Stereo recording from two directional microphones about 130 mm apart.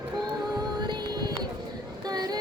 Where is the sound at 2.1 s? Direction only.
30° right (ahead or behind).